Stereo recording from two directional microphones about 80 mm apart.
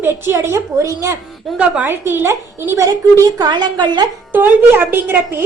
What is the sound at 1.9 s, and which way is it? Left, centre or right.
A woman's voice, right.